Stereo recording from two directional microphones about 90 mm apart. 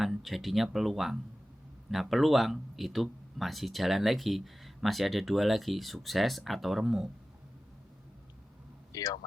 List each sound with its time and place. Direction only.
0.0 s speech: centre (ahead or behind)
8.9 s speech: 45° left (ahead or behind)